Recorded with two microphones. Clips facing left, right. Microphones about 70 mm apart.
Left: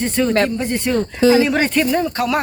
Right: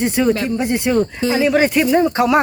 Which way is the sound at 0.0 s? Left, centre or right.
Centre.